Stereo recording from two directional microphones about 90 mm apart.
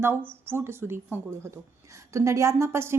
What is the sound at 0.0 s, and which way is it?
A woman's voice, 25° right (ahead or behind).